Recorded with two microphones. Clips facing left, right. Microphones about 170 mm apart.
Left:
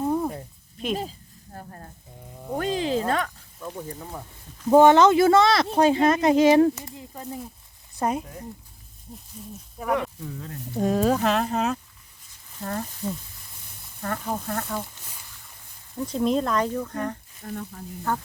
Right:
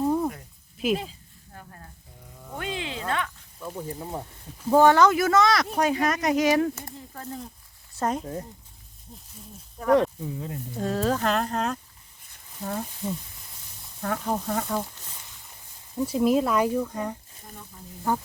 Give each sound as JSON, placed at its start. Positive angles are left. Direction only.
{"t": 0.0, "sound": "a sound", "side_deg": 0}
{"t": 0.8, "sound": "speech", "side_deg": -5}
{"t": 1.5, "sound": "sizzle", "side_deg": 40}
{"t": 2.3, "sound": "a sound", "side_deg": 25}
{"t": 2.6, "sound": "speech", "side_deg": 40}
{"t": 3.6, "sound": "speech", "side_deg": -5}
{"t": 3.8, "sound": "speech", "side_deg": -25}
{"t": 4.7, "sound": "speech", "side_deg": 20}
{"t": 7.1, "sound": "speech", "side_deg": 15}
{"t": 9.8, "sound": "speech", "side_deg": 5}
{"t": 10.2, "sound": "speech", "side_deg": -20}
{"t": 10.8, "sound": "speech", "side_deg": 15}
{"t": 16.0, "sound": "speech", "side_deg": -10}
{"t": 17.4, "sound": "speech", "side_deg": 65}